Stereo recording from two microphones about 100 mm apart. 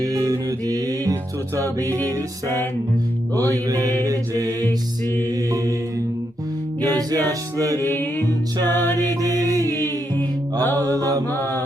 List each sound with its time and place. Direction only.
0.0 s music: 35° right (ahead or behind)
1.5 s mantra: 30° right (ahead or behind)
3.7 s mantra: 35° right (ahead or behind)
6.8 s music: 40° right (ahead or behind)
7.3 s mantra: 35° right (ahead or behind)
9.0 s mantra: 35° right (ahead or behind)
10.2 s music: 20° left (ahead or behind)
10.8 s mantra: 40° right (ahead or behind)